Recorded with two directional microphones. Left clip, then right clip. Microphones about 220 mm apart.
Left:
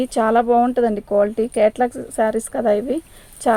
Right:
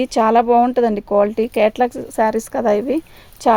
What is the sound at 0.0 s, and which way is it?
Speech, 35° right (ahead or behind).